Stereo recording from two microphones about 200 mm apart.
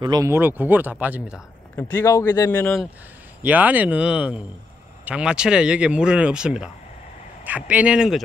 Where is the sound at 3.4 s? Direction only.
10° right (ahead or behind).